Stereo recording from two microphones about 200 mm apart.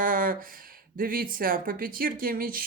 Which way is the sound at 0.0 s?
45° right (ahead or behind).